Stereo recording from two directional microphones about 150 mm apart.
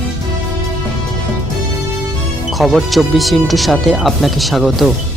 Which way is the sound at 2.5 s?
Centre (ahead or behind).